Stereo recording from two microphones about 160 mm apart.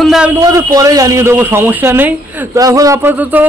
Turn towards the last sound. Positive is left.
turn(degrees=-10)  # may be behind; listen again after turning